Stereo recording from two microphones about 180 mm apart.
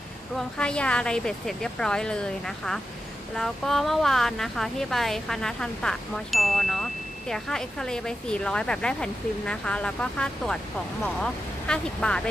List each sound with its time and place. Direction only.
0.4 s speech: 5° left (ahead or behind)